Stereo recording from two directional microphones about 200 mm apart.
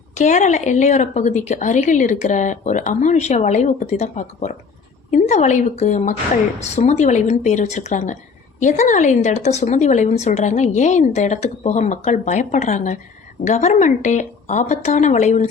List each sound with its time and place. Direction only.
0.1 s a woman's voice: 35° left (ahead or behind)